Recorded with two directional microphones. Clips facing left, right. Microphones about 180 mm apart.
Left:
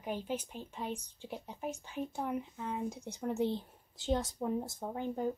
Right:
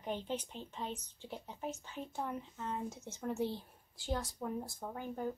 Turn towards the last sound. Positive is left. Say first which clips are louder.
# left 4 dB
turn(degrees=20)  # may be behind; listen again after turning